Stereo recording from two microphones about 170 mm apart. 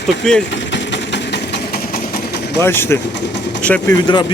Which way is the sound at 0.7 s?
90° left.